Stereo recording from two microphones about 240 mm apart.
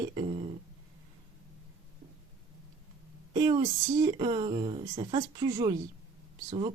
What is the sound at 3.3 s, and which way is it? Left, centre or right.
Speech, centre.